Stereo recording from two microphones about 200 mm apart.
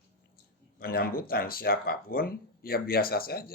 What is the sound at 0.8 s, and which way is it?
Speech, 50° left (ahead or behind).